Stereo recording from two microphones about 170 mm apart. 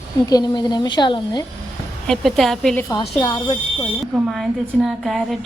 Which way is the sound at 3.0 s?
25° left (ahead or behind).